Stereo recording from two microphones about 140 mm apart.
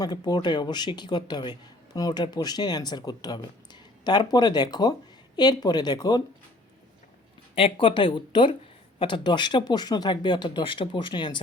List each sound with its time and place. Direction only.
0.0 s speech: 30° left (ahead or behind)
7.5 s speech: 40° left (ahead or behind)